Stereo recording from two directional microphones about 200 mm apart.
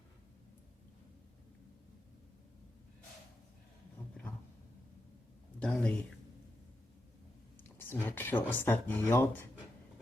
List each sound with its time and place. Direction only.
5.5 s speech: 5° left (ahead or behind)
7.5 s speech: 10° left (ahead or behind)